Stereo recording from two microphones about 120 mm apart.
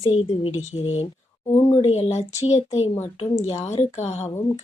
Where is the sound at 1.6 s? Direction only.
40° left (ahead or behind).